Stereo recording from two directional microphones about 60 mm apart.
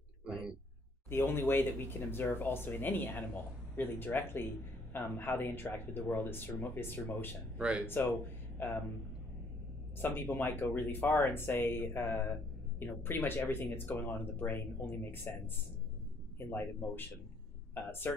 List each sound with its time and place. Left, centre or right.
1.1 s speech: left
7.5 s speech: centre
7.8 s speech: left
9.9 s speech: left